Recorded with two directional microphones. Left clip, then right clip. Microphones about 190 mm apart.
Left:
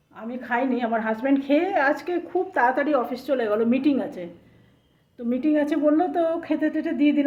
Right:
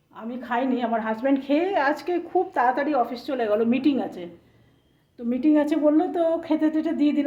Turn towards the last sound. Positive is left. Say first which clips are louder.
# left 1 dB
turn(degrees=-5)  # may be behind; listen again after turning